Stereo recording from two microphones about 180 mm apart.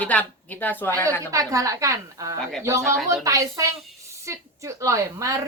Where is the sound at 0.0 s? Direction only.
10° left (ahead or behind).